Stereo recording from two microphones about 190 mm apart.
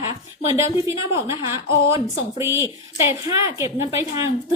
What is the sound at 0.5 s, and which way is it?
A woman's voice, 15° right (ahead or behind).